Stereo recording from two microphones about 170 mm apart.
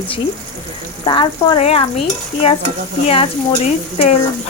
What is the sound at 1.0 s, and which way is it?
Speech, 30° left (ahead or behind).